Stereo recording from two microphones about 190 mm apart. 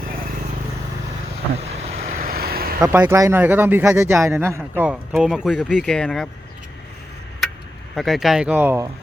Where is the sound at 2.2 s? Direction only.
50° right (ahead or behind).